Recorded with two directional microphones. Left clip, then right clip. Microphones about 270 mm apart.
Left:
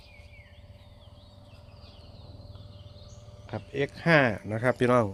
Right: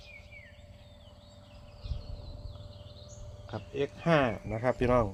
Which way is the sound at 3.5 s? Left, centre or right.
Left.